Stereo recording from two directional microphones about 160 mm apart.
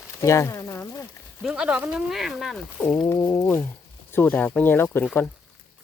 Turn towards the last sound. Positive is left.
turn(degrees=5)  # may be behind; listen again after turning